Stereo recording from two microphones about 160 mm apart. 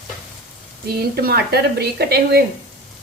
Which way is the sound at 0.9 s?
80° right.